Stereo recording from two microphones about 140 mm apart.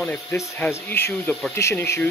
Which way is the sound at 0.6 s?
15° left (ahead or behind).